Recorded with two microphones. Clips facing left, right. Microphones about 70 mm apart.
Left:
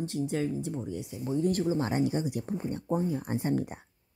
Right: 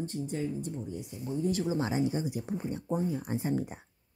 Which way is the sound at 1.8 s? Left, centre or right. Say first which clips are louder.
Left 1 dB; left.